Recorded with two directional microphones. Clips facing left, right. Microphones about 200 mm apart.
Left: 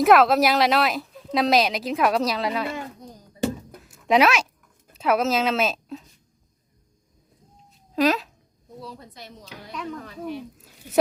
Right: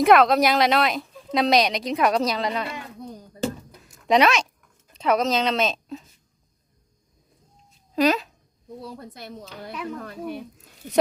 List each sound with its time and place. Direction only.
0.0 s a woman's voice: centre (ahead or behind)
3.8 s a sound: 5° left (ahead or behind)
4.9 s speech: 5° left (ahead or behind)
7.9 s a woman's voice: centre (ahead or behind)
8.9 s a woman's voice: 55° right (ahead or behind)